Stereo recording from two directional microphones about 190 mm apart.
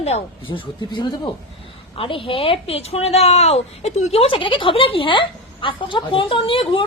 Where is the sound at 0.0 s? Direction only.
30° left (ahead or behind).